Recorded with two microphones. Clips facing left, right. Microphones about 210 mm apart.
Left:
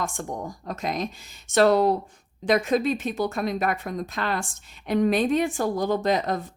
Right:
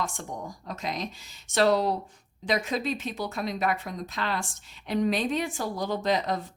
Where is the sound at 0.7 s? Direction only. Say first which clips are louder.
Left 5 dB; 50° left (ahead or behind).